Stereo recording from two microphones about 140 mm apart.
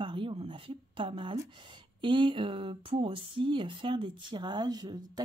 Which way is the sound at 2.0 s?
35° right (ahead or behind).